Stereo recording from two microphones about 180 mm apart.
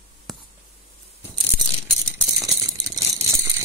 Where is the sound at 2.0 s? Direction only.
20° right (ahead or behind).